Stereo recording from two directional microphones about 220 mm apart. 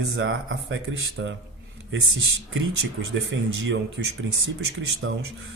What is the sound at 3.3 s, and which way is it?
Speech, 60° right (ahead or behind).